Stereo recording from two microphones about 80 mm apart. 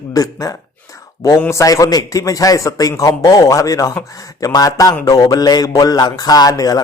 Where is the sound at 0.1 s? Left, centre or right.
Left.